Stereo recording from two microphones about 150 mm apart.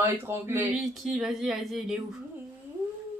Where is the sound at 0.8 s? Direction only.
Centre (ahead or behind).